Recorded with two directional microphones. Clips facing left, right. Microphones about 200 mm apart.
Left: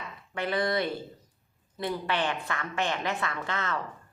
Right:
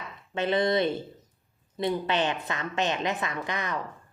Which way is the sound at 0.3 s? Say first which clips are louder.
Right 4 dB; 20° right (ahead or behind).